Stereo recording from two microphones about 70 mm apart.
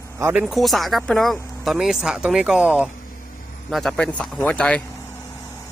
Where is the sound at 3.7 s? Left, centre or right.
Centre.